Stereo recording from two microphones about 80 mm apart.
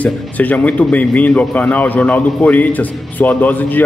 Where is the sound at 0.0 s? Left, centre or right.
Centre.